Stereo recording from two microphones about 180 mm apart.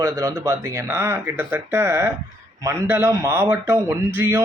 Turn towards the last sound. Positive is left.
turn(degrees=-15)  # may be behind; listen again after turning